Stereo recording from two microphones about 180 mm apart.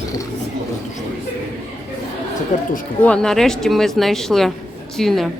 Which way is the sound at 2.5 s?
45° left (ahead or behind).